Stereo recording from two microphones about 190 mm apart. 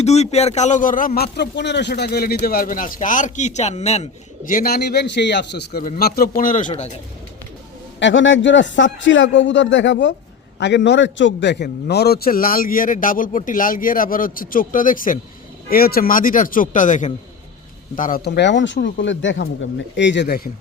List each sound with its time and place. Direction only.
0.0 s speech: 35° left (ahead or behind)
7.9 s a man's voice: 75° left (ahead or behind); by 20.5 s 55° left (ahead or behind)